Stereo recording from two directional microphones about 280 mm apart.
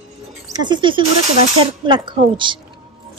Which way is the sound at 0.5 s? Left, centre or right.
Centre.